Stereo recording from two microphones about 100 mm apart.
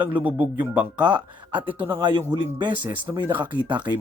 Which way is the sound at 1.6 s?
20° right (ahead or behind).